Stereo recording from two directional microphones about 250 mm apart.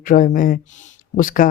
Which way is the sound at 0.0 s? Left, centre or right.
Left.